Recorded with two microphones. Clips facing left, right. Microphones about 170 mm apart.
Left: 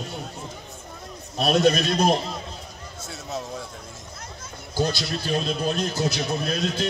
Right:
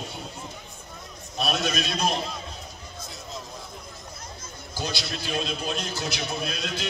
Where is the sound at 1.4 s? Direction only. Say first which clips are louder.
Left 8 dB; 50° left (ahead or behind).